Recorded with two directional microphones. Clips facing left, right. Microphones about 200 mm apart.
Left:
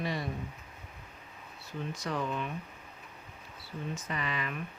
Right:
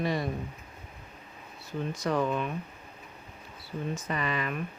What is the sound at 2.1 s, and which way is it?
Speech, 55° right (ahead or behind).